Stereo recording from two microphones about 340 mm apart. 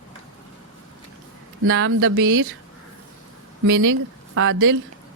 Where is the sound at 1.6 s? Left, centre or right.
Right.